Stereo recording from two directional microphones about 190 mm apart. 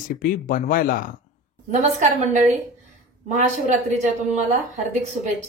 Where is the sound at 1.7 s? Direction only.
40° right (ahead or behind).